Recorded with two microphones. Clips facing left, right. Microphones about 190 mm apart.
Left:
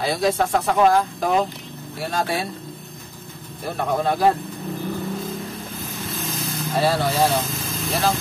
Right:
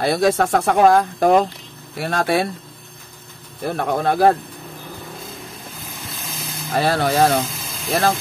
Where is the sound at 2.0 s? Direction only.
65° right (ahead or behind).